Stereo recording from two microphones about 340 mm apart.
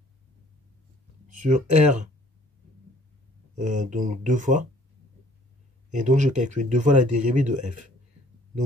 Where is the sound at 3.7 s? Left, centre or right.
Right.